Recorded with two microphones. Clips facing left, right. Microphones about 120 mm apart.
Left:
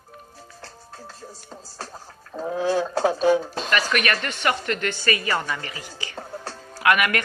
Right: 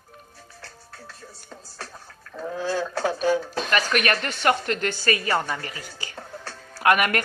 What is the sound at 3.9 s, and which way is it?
Speech, 40° right (ahead or behind).